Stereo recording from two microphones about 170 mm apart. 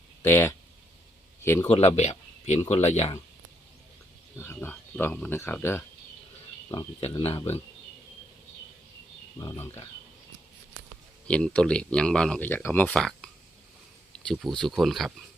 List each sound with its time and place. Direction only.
0.2 s speech: 15° left (ahead or behind)
1.7 s speech: 40° left (ahead or behind)
4.4 s speech: 10° left (ahead or behind)
7.2 s speech: 35° left (ahead or behind)
9.4 s speech: 20° left (ahead or behind)
11.3 s speech: 5° left (ahead or behind)